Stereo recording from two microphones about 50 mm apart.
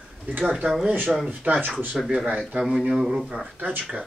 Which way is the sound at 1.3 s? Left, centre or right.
Right.